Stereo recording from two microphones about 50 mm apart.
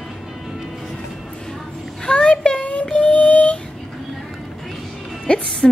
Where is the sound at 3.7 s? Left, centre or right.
Centre.